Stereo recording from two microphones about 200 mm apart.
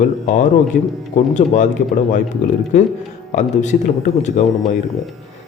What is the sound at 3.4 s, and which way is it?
A man's voice, 35° left (ahead or behind).